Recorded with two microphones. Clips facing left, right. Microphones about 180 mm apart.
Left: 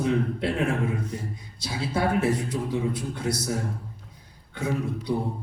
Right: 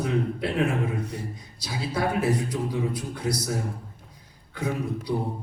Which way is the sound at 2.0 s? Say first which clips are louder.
Left 1 dB; 25° left (ahead or behind).